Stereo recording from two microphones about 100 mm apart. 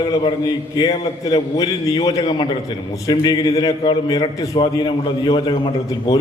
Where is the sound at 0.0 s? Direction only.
50° left (ahead or behind).